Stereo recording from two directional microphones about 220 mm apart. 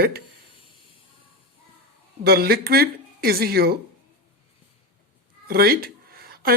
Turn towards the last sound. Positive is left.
turn(degrees=-45)  # may be behind; listen again after turning